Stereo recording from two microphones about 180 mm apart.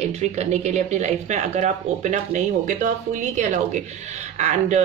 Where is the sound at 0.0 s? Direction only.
40° right (ahead or behind).